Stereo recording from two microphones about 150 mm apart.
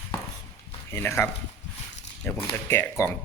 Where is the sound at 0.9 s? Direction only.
15° left (ahead or behind).